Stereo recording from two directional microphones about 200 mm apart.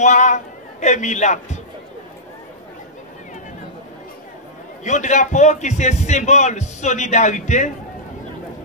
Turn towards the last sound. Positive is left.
turn(degrees=35)  # may be behind; listen again after turning